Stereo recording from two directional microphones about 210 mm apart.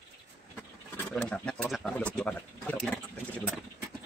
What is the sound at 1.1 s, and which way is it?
Speech, 5° left (ahead or behind).